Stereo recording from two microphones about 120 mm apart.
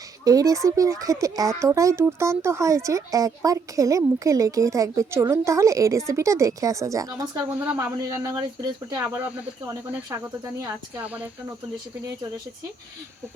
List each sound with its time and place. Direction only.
0.3 s speech: 30° right (ahead or behind)
9.0 s speech: 15° right (ahead or behind)
10.1 s speech: 30° right (ahead or behind)
10.9 s speech: 10° right (ahead or behind)